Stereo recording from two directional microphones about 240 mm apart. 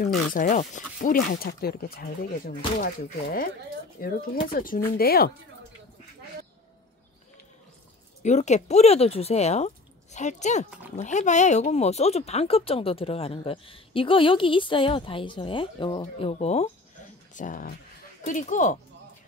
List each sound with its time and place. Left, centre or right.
0.3 s speech: left
8.2 s speech: left